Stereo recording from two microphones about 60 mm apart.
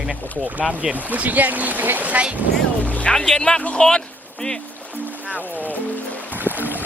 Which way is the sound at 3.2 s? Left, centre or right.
Centre.